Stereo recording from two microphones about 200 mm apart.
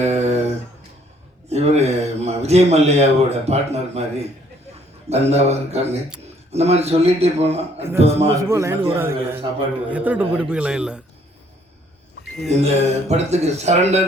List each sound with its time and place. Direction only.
0.0 s a sound: 35° right (ahead or behind)
5.0 s speech: 30° right (ahead or behind)
8.4 s a man's voice: 15° right (ahead or behind)
12.5 s speech: 35° right (ahead or behind)